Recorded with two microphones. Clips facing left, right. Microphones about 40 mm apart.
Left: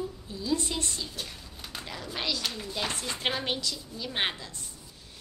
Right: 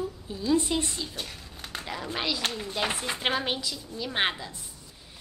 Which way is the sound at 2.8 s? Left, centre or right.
Right.